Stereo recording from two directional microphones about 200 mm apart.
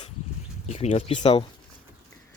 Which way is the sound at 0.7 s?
35° left (ahead or behind).